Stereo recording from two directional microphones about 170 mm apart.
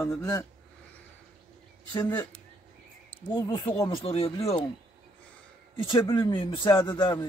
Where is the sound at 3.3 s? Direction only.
25° left (ahead or behind).